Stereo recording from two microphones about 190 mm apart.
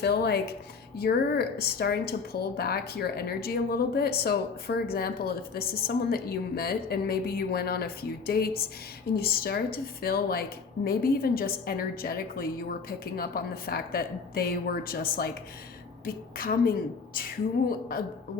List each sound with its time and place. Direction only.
0.0 s speech: 60° left (ahead or behind)